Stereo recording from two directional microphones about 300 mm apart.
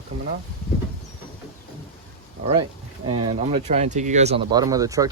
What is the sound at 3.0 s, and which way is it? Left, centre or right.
Speech, centre.